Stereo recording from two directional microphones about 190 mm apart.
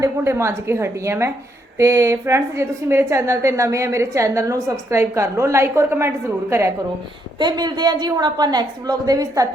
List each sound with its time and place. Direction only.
0.0 s a woman's voice: 15° right (ahead or behind)